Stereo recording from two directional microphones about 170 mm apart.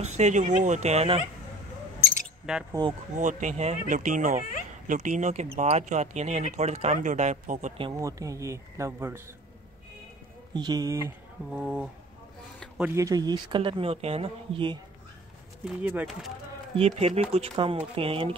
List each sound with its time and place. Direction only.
0.0 s speech: 40° right (ahead or behind)
2.5 s speech: 5° right (ahead or behind)
3.2 s speech: 50° right (ahead or behind)
7.9 s speech: 20° right (ahead or behind)
10.5 s speech: 25° right (ahead or behind)
12.5 s a sound: 5° right (ahead or behind)
12.9 s speech: 20° right (ahead or behind)
15.6 s speech: 10° right (ahead or behind)
16.7 s speech: 35° right (ahead or behind)